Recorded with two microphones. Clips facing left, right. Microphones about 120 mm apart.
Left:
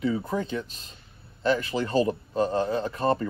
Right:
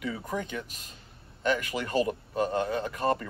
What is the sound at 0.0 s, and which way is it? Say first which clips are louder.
A man's voice: left 6 dB; 30° left (ahead or behind).